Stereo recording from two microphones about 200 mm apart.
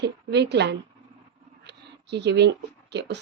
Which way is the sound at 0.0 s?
60° right (ahead or behind).